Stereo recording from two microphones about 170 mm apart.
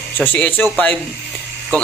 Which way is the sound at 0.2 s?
10° left (ahead or behind).